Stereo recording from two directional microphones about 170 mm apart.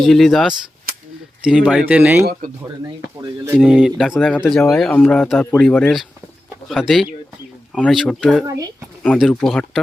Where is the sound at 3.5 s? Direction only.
5° right (ahead or behind).